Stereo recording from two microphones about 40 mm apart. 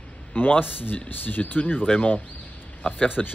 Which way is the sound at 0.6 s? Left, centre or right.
Left.